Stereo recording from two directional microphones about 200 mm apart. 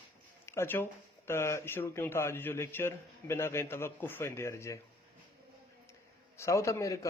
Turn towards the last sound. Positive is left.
turn(degrees=15)  # may be behind; listen again after turning